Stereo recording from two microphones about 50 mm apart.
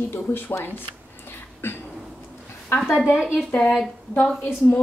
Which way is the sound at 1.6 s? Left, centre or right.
Left.